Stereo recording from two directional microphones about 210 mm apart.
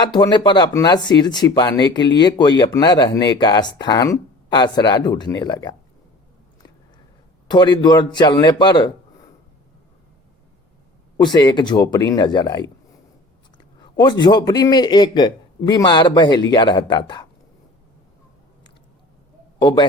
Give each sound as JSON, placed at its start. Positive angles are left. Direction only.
{"t": 0.0, "sound": "speech", "side_deg": 20}
{"t": 7.5, "sound": "speech", "side_deg": 20}
{"t": 11.2, "sound": "speech", "side_deg": 20}
{"t": 13.9, "sound": "speech", "side_deg": 20}
{"t": 19.5, "sound": "a man's voice", "side_deg": 20}